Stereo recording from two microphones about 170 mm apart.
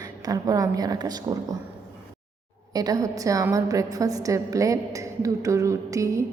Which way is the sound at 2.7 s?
20° right (ahead or behind).